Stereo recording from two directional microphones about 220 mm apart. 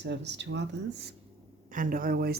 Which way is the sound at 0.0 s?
50° right (ahead or behind).